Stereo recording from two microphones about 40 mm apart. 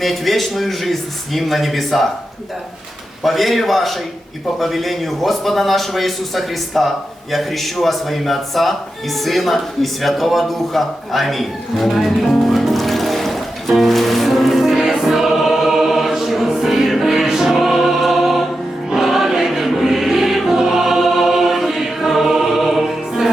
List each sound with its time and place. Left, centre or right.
0.0 s a man's voice: centre
3.2 s a man's voice: centre
12.4 s music: centre
14.8 s choir: centre
18.9 s music: centre
20.5 s choir: centre